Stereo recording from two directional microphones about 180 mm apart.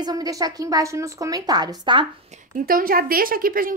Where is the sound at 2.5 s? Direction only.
50° right (ahead or behind).